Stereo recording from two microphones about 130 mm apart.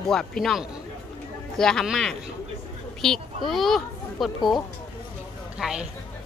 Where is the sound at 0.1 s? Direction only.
5° left (ahead or behind).